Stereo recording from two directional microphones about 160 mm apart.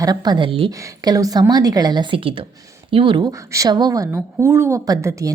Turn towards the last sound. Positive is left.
turn(degrees=-20)  # may be behind; listen again after turning